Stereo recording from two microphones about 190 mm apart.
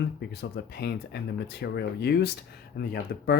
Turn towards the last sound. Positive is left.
turn(degrees=55)  # may be behind; listen again after turning